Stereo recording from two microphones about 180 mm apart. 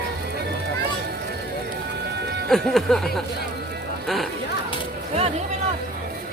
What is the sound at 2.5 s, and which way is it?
Speech, centre (ahead or behind).